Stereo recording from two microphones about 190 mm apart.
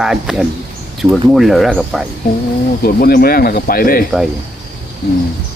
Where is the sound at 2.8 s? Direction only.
50° left (ahead or behind).